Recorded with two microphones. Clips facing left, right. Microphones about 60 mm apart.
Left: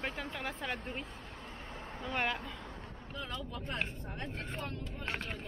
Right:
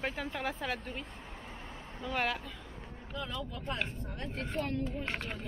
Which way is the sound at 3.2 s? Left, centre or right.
Centre.